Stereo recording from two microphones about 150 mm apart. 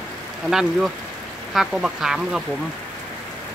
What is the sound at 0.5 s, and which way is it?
Speech, 5° right (ahead or behind).